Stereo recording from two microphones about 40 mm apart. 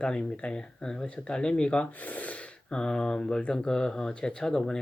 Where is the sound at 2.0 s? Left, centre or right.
Left.